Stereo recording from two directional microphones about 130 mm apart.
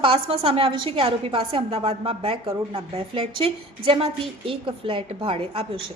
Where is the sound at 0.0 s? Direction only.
45° right (ahead or behind).